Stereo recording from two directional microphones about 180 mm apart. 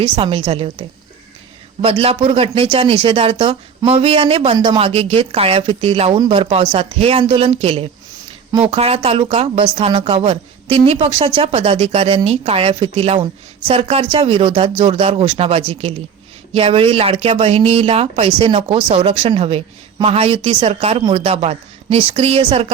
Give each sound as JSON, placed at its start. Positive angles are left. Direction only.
{"t": 0.0, "sound": "speech", "side_deg": -30}